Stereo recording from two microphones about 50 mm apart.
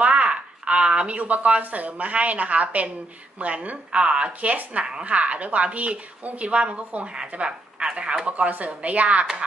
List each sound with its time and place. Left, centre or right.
0.0 s a woman's voice: right
7.2 s speech: centre
8.3 s a woman's voice: right